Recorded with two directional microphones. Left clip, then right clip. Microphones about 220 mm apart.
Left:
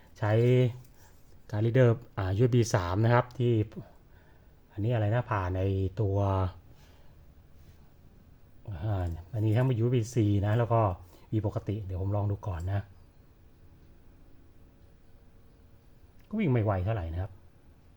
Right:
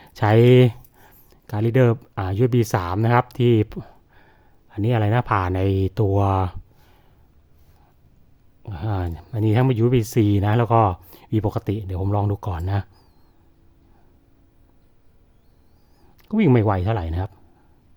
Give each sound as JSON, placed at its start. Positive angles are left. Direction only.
{"t": 0.0, "sound": "speech", "side_deg": -40}
{"t": 8.7, "sound": "speech", "side_deg": -45}
{"t": 16.3, "sound": "speech", "side_deg": -45}